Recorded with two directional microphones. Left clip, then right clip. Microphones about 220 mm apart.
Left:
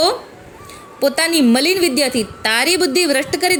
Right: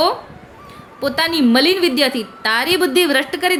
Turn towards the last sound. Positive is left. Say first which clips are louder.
# even
turn(degrees=15)  # may be behind; listen again after turning